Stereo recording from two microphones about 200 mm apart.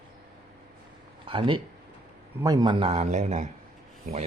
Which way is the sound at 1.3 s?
25° right (ahead or behind).